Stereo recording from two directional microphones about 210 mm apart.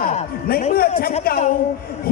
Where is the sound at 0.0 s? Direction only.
35° left (ahead or behind).